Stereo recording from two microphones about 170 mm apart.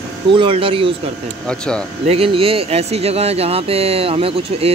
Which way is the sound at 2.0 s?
35° right (ahead or behind).